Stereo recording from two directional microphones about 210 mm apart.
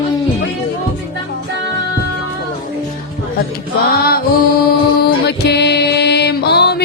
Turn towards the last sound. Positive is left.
turn(degrees=50)  # may be behind; listen again after turning